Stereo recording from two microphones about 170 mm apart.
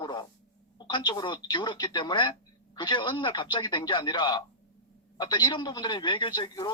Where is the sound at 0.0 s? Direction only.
25° left (ahead or behind).